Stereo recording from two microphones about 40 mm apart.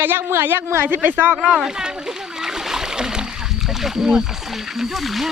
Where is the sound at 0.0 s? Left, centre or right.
Right.